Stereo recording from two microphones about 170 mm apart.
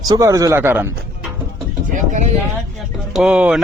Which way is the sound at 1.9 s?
50° right (ahead or behind).